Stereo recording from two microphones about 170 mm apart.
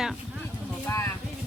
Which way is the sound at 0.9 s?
20° left (ahead or behind).